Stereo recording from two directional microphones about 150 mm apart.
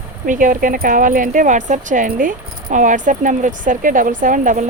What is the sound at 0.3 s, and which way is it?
Speech, 60° right (ahead or behind).